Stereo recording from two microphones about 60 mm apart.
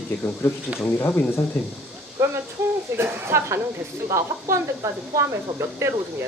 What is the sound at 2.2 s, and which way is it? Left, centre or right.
Speech, right.